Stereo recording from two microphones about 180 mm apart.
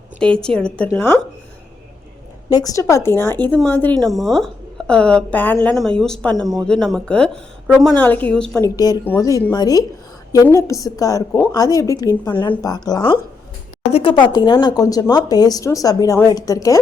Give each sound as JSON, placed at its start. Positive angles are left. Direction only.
{"t": 0.2, "sound": "a woman's voice", "side_deg": 5}
{"t": 2.5, "sound": "a woman's voice", "side_deg": 20}
{"t": 8.6, "sound": "speech", "side_deg": 20}